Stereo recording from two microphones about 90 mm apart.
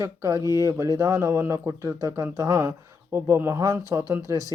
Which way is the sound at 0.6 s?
35° right (ahead or behind).